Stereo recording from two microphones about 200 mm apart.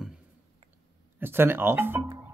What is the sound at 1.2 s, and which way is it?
Speech, 10° right (ahead or behind).